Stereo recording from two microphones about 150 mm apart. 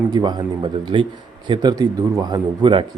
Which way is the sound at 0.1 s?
30° right (ahead or behind).